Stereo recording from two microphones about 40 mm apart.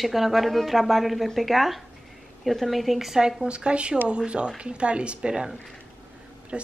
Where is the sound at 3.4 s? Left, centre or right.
Right.